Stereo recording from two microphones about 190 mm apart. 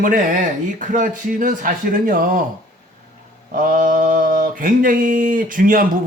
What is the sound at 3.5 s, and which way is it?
Speech, 45° right (ahead or behind).